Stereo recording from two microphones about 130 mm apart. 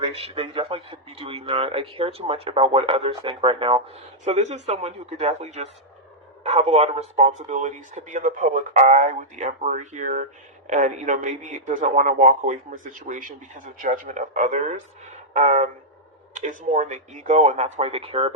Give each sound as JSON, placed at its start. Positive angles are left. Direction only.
{"t": 0.0, "sound": "a man's voice", "side_deg": -50}
{"t": 4.2, "sound": "speech", "side_deg": -60}
{"t": 16.3, "sound": "speech", "side_deg": -75}